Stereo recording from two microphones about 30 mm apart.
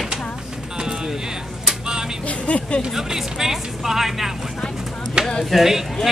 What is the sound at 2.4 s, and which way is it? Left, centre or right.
Speech, left.